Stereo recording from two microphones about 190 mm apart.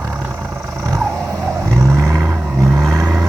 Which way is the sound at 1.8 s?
15° right (ahead or behind).